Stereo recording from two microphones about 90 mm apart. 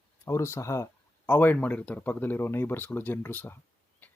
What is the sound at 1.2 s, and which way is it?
Speech, 20° left (ahead or behind).